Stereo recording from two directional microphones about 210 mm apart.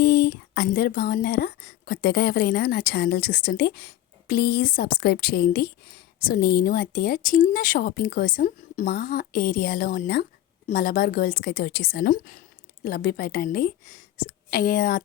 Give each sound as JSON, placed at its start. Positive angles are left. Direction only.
{"t": 0.0, "sound": "speech", "side_deg": 50}